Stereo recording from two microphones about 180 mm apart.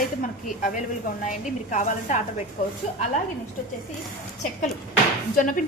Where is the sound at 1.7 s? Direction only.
45° left (ahead or behind).